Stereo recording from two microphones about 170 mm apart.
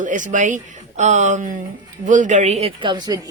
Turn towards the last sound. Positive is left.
turn(degrees=-25)  # may be behind; listen again after turning